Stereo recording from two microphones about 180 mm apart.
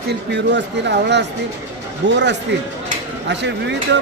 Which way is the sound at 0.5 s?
70° right (ahead or behind).